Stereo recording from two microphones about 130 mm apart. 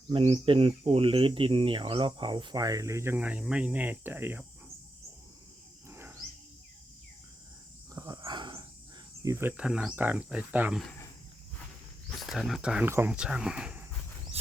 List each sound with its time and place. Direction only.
0.1 s speech: 45° right (ahead or behind); by 4.4 s 15° right (ahead or behind)
5.9 s wild animals: 15° right (ahead or behind)
8.0 s a sound: 30° right (ahead or behind)
9.2 s speech: 20° right (ahead or behind)
12.2 s speech: centre (ahead or behind)
12.9 s speech: 20° right (ahead or behind)
13.1 s speech: 5° right (ahead or behind)